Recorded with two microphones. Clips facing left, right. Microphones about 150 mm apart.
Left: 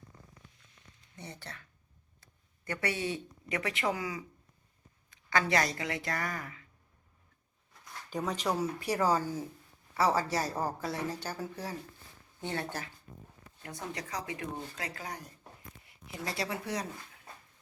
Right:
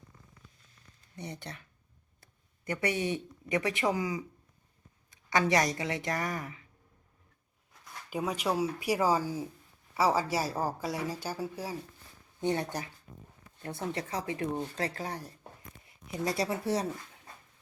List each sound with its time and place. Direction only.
1.2 s a woman's voice: 20° right (ahead or behind)
2.6 s speech: 15° right (ahead or behind)
5.3 s a woman's voice: 20° right (ahead or behind)
8.1 s speech: 10° right (ahead or behind)
13.6 s a woman's voice: 30° right (ahead or behind)